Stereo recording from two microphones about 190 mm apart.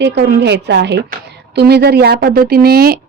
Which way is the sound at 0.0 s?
65° right (ahead or behind).